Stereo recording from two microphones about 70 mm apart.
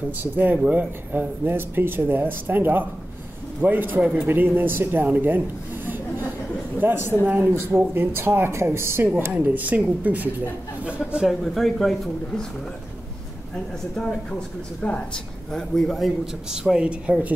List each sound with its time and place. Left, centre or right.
0.2 s speech: right
5.9 s chuckle: right
6.8 s speech: right
9.3 s speech: right
11.0 s speech: centre
14.8 s a woman's voice: left
15.5 s speech: centre
16.7 s a woman's voice: centre